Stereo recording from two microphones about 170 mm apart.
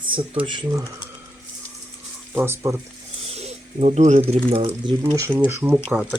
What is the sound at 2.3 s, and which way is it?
Speech, 15° right (ahead or behind).